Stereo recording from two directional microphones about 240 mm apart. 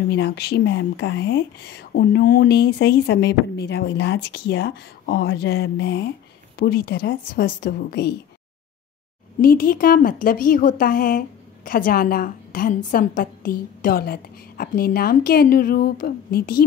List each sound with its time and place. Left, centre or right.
0.1 s a woman's voice: left
9.4 s a woman's voice: left